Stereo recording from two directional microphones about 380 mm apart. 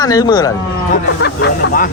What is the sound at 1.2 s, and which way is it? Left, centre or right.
Speech, left.